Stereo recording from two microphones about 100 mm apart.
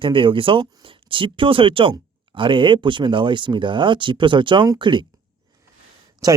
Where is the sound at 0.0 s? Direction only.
60° right (ahead or behind).